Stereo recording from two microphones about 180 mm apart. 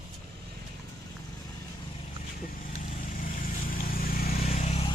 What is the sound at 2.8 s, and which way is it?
Vehicle, 50° left (ahead or behind).